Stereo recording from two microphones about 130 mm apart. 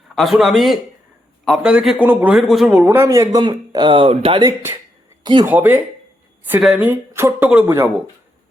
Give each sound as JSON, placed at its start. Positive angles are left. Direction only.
{"t": 0.2, "sound": "a man's voice", "side_deg": 0}
{"t": 2.6, "sound": "speech", "side_deg": -15}
{"t": 3.4, "sound": "speech", "side_deg": -35}
{"t": 4.4, "sound": "speech", "side_deg": -20}
{"t": 5.2, "sound": "speech", "side_deg": -35}
{"t": 5.5, "sound": "speech", "side_deg": -15}
{"t": 6.6, "sound": "a man's voice", "side_deg": 0}
{"t": 6.8, "sound": "speech", "side_deg": -20}